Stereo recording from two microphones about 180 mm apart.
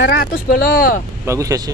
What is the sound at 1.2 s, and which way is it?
Speech, 15° right (ahead or behind).